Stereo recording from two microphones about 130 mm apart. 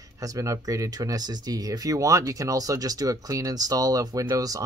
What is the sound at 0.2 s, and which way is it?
Speech, 25° right (ahead or behind).